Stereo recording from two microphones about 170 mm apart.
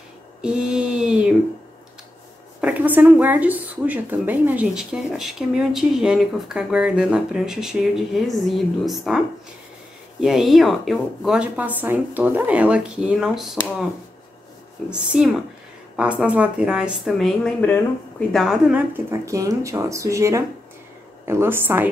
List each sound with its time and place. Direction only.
0.4 s a sound: 5° right (ahead or behind)
2.6 s a woman's voice: 10° right (ahead or behind)
10.2 s a woman's voice: centre (ahead or behind)
14.9 s a woman's voice: 5° right (ahead or behind)